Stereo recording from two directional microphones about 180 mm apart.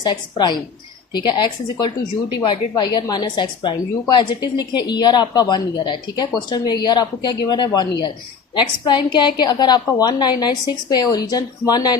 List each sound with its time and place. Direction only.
0.0 s a woman's voice: 25° left (ahead or behind)